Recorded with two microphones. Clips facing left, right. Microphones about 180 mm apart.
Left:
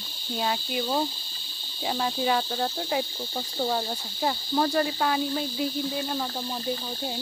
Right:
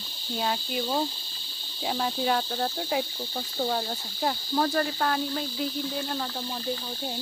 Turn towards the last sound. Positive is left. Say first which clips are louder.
# left 2 dB
turn(degrees=5)  # may be behind; listen again after turning